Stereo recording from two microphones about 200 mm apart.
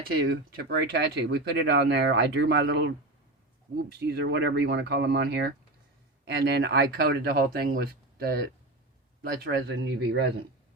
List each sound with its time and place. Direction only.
0.1 s speech: 50° right (ahead or behind)
4.0 s speech: 60° right (ahead or behind)